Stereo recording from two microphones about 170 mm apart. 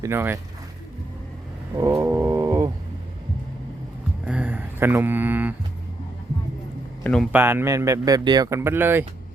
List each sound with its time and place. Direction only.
0.0 s speech: 15° right (ahead or behind)
1.7 s roaring cats: 20° right (ahead or behind)
4.3 s speech: 10° right (ahead or behind)
7.0 s speech: 5° left (ahead or behind)
7.3 s speech: 15° right (ahead or behind)